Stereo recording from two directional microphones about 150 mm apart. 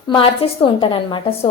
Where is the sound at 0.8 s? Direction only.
30° left (ahead or behind).